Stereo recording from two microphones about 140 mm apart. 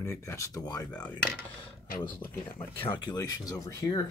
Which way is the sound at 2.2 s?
15° left (ahead or behind).